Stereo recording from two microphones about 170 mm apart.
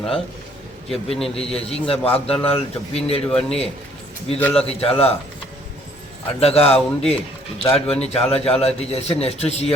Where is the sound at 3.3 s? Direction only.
5° left (ahead or behind).